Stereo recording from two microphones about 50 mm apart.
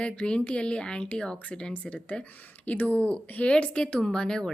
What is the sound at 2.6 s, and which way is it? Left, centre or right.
Speech, left.